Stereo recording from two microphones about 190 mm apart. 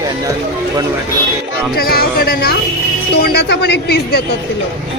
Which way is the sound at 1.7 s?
50° left (ahead or behind).